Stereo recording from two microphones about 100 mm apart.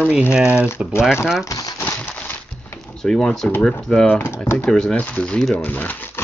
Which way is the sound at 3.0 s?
5° left (ahead or behind).